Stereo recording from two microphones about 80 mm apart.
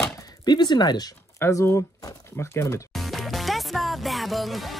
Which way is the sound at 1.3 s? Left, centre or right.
Left.